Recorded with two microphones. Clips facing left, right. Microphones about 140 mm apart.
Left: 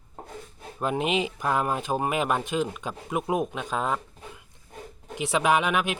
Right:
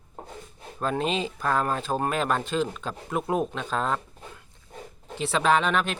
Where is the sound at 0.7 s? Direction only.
15° left (ahead or behind).